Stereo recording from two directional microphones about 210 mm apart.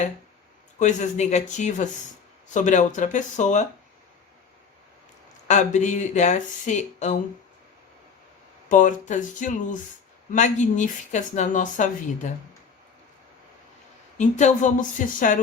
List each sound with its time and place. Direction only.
0.8 s speech: 35° left (ahead or behind)
5.5 s speech: 35° left (ahead or behind)
8.7 s speech: 35° left (ahead or behind)
14.2 s speech: 35° left (ahead or behind)